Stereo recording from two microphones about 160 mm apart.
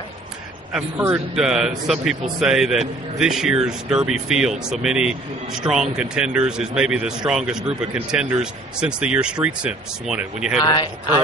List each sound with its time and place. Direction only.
0.7 s speech: 10° right (ahead or behind)
10.6 s speech: 25° left (ahead or behind)